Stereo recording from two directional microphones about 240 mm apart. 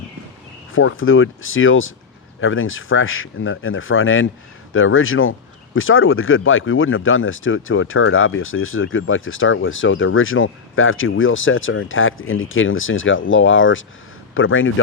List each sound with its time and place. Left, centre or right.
0.7 s speech: left